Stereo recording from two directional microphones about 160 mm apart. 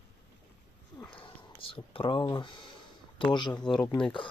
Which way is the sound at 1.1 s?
35° left (ahead or behind).